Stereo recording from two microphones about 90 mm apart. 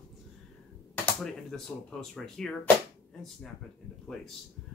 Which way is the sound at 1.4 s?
5° left (ahead or behind).